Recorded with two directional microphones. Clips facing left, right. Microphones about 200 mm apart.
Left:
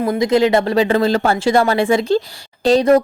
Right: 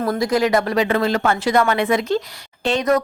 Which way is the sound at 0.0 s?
20° left (ahead or behind).